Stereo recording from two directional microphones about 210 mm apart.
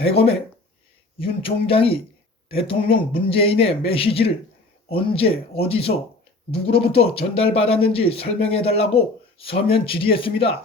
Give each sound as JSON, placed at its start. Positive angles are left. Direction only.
{"t": 0.0, "sound": "speech", "side_deg": 25}